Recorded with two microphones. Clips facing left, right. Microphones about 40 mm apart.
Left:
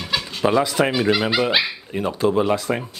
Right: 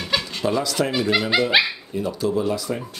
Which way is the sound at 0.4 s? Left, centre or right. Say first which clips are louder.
Left 6 dB; left.